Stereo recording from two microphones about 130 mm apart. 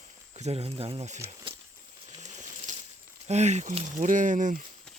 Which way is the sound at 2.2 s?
70° right (ahead or behind).